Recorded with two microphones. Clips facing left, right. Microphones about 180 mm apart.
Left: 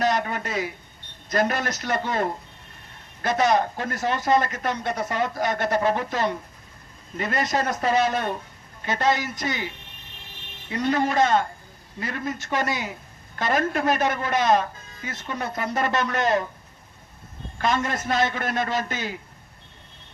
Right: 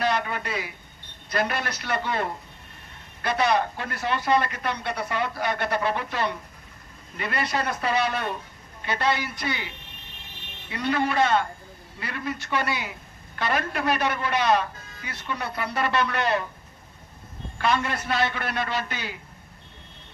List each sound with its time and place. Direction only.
0.0 s a woman's voice: 45° left (ahead or behind)
17.6 s speech: 40° left (ahead or behind)